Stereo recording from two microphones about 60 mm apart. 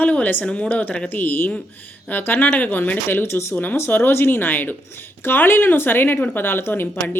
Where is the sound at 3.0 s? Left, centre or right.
Left.